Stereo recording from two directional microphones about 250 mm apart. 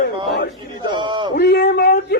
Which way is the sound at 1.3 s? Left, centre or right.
Left.